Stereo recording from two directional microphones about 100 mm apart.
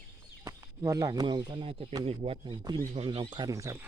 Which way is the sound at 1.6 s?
75° right (ahead or behind).